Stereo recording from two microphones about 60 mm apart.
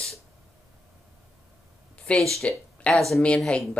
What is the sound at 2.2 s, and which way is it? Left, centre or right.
Speech, centre.